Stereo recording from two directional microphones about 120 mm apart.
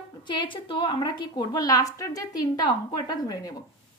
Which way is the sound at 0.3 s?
45° left (ahead or behind).